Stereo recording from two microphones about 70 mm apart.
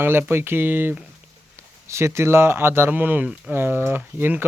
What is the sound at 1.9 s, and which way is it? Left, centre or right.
Speech, right.